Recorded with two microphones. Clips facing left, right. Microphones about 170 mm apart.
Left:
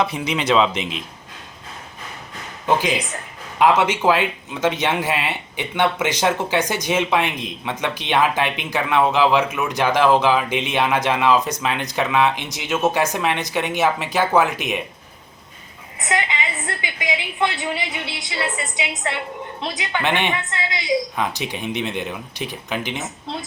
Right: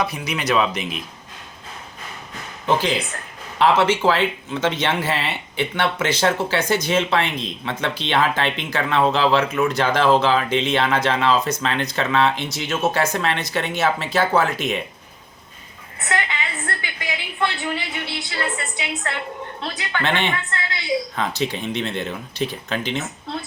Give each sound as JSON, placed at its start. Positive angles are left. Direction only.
{"t": 0.0, "sound": "speech", "side_deg": 25}
{"t": 3.6, "sound": "speech", "side_deg": 15}
{"t": 16.0, "sound": "speech", "side_deg": 15}